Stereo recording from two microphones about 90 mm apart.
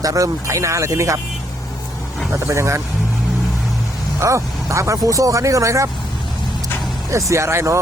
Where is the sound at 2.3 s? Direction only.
35° right (ahead or behind).